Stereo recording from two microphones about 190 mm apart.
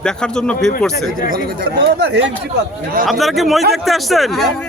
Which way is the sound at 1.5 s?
55° right (ahead or behind).